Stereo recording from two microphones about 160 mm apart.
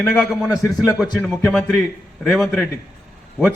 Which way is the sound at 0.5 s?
20° left (ahead or behind).